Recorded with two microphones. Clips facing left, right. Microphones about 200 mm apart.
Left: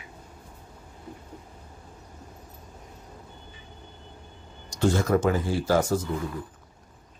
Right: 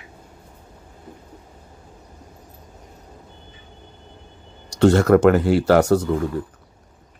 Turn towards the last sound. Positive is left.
turn(degrees=-70)  # may be behind; listen again after turning